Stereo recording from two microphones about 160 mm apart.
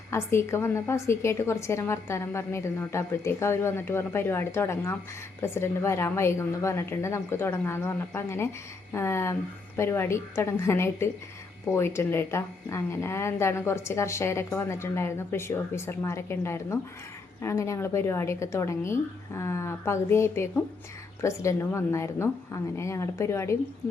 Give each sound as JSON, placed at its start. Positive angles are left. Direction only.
{"t": 0.1, "sound": "speech", "side_deg": 15}